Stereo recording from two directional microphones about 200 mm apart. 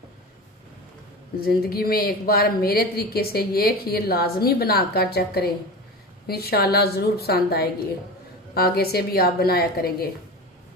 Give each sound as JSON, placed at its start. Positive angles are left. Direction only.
{"t": 1.4, "sound": "speech", "side_deg": 50}